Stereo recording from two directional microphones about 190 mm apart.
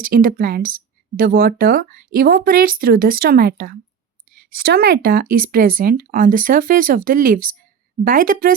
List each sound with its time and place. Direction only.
0.0 s speech: 50° right (ahead or behind)